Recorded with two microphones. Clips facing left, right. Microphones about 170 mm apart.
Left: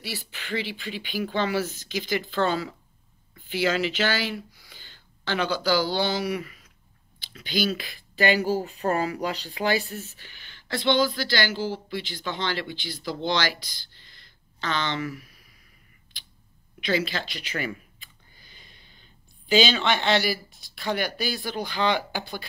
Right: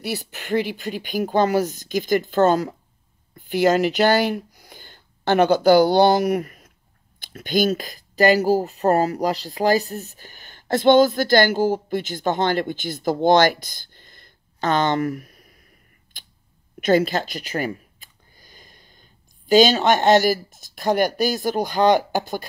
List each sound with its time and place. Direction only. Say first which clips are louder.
0.0 s speech: right 8 dB; 50° right (ahead or behind)
16.1 s a sound: right 4 dB; 50° right (ahead or behind)
16.8 s speech: right 8 dB; 45° right (ahead or behind)